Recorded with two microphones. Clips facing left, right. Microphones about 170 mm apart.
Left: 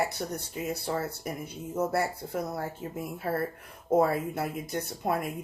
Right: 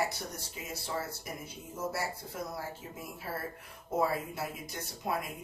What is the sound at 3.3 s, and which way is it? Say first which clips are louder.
Speech: left 9 dB; 55° left (ahead or behind).